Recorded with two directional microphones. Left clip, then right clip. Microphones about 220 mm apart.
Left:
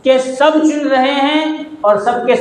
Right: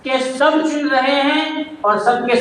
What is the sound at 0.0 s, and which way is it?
A man's voice, 30° left (ahead or behind).